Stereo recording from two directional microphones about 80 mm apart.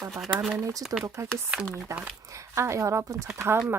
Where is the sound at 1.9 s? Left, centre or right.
Right.